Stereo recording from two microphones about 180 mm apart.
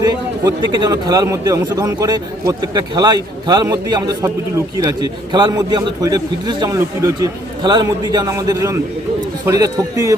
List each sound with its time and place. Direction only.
0.0 s a man's voice: 20° right (ahead or behind)